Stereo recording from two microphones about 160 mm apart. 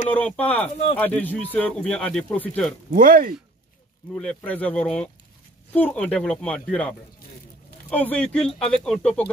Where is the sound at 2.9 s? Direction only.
60° right (ahead or behind).